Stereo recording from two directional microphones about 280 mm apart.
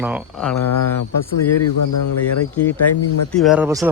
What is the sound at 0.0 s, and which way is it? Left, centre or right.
Speech, centre.